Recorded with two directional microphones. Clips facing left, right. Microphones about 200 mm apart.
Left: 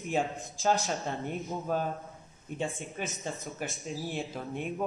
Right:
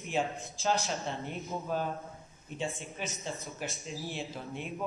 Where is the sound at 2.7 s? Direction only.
Centre (ahead or behind).